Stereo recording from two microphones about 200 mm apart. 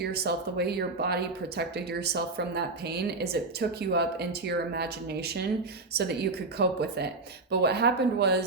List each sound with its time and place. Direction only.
0.0 s speech: 50° right (ahead or behind)